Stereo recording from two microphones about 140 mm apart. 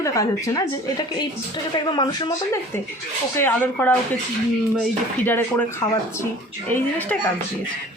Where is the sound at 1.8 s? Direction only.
35° left (ahead or behind).